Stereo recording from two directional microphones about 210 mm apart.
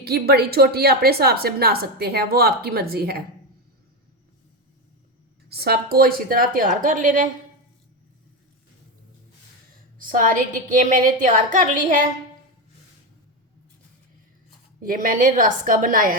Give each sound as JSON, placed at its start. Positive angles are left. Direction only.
{"t": 0.0, "sound": "a woman's voice", "side_deg": -50}
{"t": 5.5, "sound": "a woman's voice", "side_deg": -50}
{"t": 10.0, "sound": "a woman's voice", "side_deg": -40}
{"t": 14.8, "sound": "a woman's voice", "side_deg": -40}